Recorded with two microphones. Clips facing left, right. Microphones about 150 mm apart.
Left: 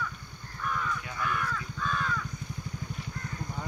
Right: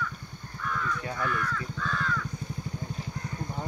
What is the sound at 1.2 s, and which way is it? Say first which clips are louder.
Crow: even; 15° left (ahead or behind).